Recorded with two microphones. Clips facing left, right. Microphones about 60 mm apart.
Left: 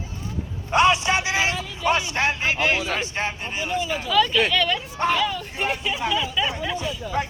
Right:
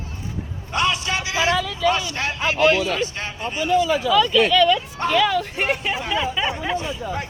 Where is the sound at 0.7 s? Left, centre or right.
Left.